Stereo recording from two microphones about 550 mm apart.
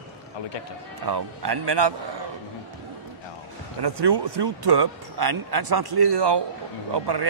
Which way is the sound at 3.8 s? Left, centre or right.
Right.